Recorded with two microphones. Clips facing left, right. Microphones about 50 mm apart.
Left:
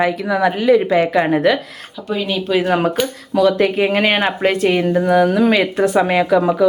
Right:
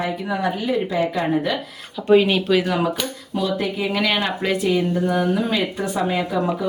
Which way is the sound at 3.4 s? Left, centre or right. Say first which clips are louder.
Left 9 dB; left.